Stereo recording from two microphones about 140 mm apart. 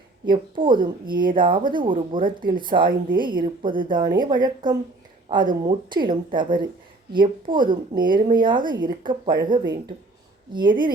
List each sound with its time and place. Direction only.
0.3 s speech: 35° right (ahead or behind)